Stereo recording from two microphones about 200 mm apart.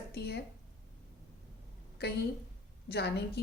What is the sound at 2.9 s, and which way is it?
Speech, 55° left (ahead or behind).